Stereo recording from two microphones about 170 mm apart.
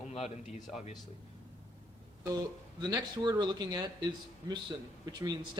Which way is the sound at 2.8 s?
25° right (ahead or behind).